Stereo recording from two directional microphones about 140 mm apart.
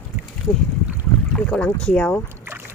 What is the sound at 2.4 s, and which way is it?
Boat, 15° right (ahead or behind).